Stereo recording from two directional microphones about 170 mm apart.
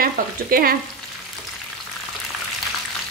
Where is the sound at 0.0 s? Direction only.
60° right (ahead or behind).